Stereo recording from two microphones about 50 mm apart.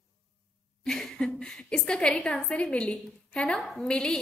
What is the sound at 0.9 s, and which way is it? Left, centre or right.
A woman's voice, centre.